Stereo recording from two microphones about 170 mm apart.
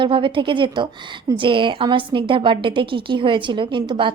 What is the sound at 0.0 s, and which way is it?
A woman's voice, 30° right (ahead or behind).